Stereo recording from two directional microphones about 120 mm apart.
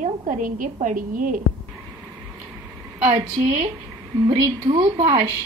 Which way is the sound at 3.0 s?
65° right (ahead or behind).